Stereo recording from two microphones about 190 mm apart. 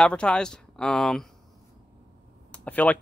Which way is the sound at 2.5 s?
5° left (ahead or behind).